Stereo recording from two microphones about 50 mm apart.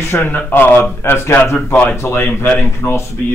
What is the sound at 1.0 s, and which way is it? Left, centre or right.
Speech, left.